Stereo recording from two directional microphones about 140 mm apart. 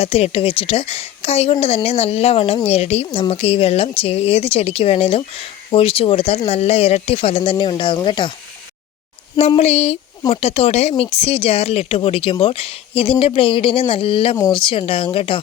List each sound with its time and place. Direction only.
0.0 s speech: 45° left (ahead or behind)
9.6 s speech: 50° left (ahead or behind)